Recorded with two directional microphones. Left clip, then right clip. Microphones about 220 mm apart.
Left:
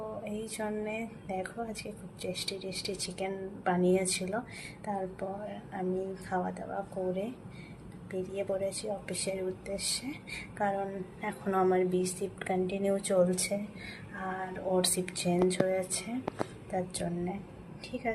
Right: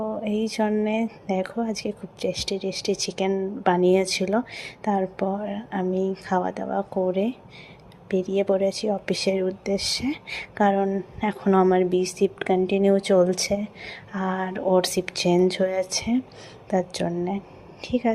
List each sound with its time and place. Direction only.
0.3 s speech: 35° right (ahead or behind)